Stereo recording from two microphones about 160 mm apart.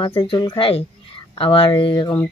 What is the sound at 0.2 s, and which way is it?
A woman's voice, 30° left (ahead or behind).